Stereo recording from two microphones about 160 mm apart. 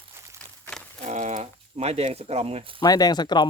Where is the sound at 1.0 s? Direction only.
50° right (ahead or behind).